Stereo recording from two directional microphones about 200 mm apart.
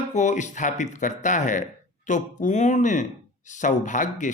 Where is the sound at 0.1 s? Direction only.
35° left (ahead or behind).